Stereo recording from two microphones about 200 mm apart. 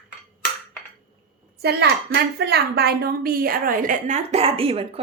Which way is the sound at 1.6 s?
55° right (ahead or behind).